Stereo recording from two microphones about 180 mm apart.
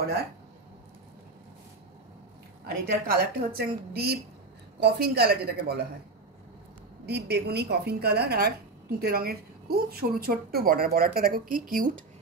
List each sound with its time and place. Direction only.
2.6 s a woman's voice: 55° right (ahead or behind)
7.1 s a woman's voice: 65° right (ahead or behind); by 11.9 s 50° right (ahead or behind)